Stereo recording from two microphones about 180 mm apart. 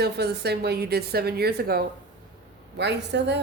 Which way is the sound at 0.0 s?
65° right (ahead or behind).